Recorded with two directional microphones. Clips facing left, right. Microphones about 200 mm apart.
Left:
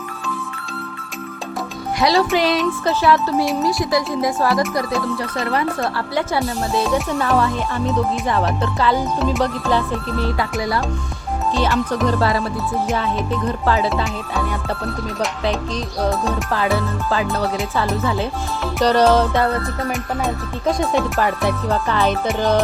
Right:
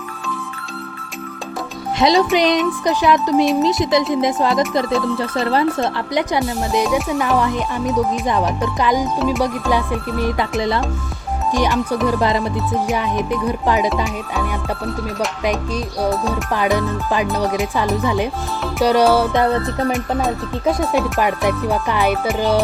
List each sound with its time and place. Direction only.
2.0 s speech: 20° right (ahead or behind)
2.8 s music: 15° right (ahead or behind)
3.5 s speech: 20° right (ahead or behind)
6.1 s music: 15° right (ahead or behind)
11.5 s music: 15° right (ahead or behind)
15.4 s music: 15° right (ahead or behind)
19.9 s music: 5° right (ahead or behind)